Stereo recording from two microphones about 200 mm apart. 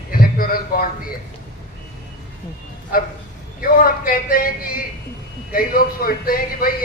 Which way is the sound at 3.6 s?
45° left (ahead or behind).